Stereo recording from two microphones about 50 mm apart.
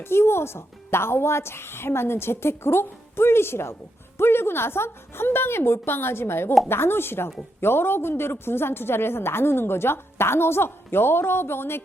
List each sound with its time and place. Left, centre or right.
0.0 s a woman's voice: left